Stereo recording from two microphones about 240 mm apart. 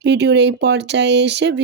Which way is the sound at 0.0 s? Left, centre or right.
Right.